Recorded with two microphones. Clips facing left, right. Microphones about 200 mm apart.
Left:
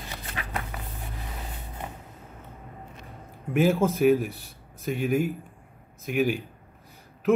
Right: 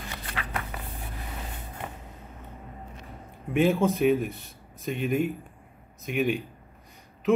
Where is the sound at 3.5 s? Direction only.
Centre (ahead or behind).